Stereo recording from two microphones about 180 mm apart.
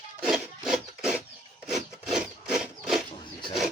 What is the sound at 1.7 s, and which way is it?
Rub, centre (ahead or behind).